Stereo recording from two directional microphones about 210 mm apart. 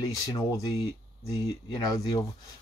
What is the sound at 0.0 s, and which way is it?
Speech, 15° left (ahead or behind).